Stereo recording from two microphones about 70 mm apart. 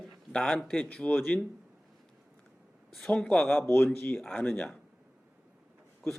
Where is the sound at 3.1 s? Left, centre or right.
Centre.